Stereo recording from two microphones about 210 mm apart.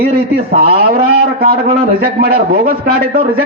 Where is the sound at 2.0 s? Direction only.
45° right (ahead or behind).